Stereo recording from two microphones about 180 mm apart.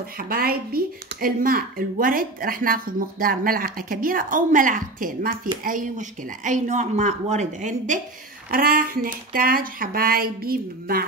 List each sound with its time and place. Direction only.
0.2 s a woman's voice: 55° right (ahead or behind)